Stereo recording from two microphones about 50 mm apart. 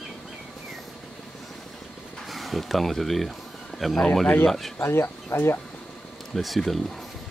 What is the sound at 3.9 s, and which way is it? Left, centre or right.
Speech, centre.